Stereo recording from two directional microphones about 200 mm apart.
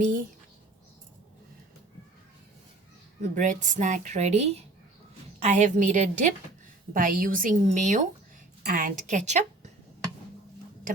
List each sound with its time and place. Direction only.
3.2 s a woman's voice: 40° right (ahead or behind)